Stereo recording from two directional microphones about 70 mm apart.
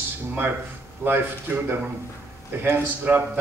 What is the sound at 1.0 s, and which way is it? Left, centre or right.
A man's voice, right.